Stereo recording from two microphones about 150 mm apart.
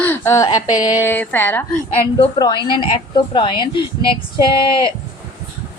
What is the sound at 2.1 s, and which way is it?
A woman's voice, 35° left (ahead or behind).